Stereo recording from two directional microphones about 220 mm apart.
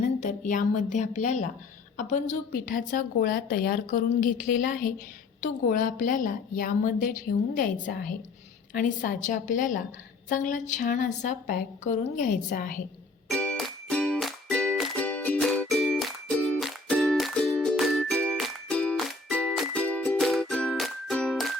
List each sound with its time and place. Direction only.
0.2 s a woman's voice: 35° left (ahead or behind)
13.3 s music: 5° left (ahead or behind)